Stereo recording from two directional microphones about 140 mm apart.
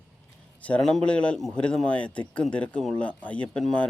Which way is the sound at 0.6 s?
10° left (ahead or behind).